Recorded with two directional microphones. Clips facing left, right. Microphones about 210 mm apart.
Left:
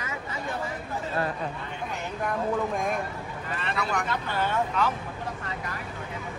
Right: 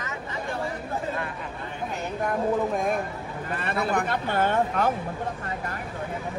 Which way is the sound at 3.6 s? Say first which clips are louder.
Right 4 dB; 50° right (ahead or behind).